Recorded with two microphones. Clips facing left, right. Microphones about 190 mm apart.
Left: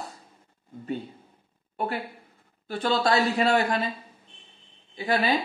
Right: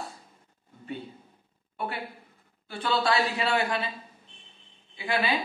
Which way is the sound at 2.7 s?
45° left (ahead or behind).